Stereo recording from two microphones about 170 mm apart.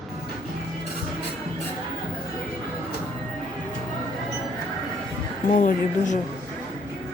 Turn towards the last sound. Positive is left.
turn(degrees=50)  # may be behind; listen again after turning